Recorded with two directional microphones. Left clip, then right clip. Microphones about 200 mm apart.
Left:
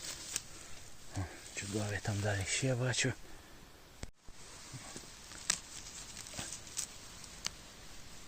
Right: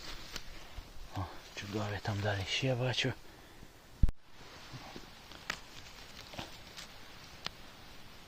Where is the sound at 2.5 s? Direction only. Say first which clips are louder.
Right 2 dB; 5° left (ahead or behind).